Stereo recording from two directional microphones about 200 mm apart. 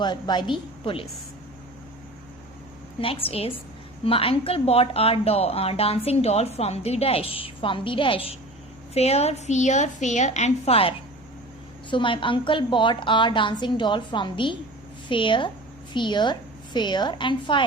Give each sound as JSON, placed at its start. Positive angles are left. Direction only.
{"t": 0.0, "sound": "a woman's voice", "side_deg": 20}
{"t": 3.0, "sound": "a woman's voice", "side_deg": 30}